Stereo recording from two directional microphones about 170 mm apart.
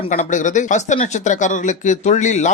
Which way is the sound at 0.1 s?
50° left (ahead or behind).